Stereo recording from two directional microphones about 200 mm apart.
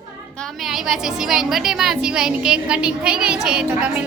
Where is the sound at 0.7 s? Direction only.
Centre (ahead or behind).